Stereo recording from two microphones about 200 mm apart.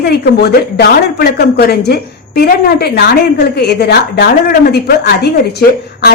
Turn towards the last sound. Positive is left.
turn(degrees=55)  # may be behind; listen again after turning